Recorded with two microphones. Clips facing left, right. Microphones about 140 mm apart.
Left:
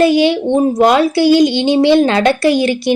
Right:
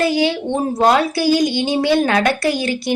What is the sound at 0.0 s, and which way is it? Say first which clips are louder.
Speech: left 6 dB; 20° left (ahead or behind).